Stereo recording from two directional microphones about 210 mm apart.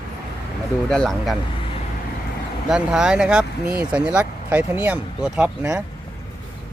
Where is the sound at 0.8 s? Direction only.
5° left (ahead or behind).